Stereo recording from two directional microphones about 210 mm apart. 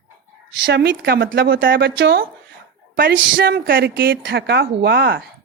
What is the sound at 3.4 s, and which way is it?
Speech, 45° right (ahead or behind).